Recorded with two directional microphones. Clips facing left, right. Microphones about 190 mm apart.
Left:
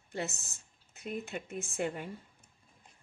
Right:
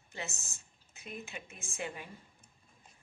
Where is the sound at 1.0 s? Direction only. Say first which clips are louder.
Left 7 dB; 55° left (ahead or behind).